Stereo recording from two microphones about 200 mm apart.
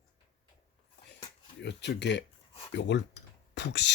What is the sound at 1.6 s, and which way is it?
Speech, 60° left (ahead or behind).